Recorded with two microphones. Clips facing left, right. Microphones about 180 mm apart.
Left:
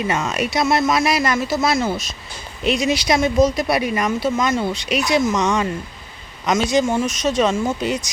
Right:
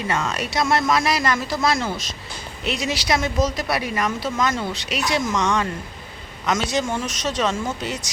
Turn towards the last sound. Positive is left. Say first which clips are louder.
# left 5 dB
turn(degrees=10)  # may be behind; listen again after turning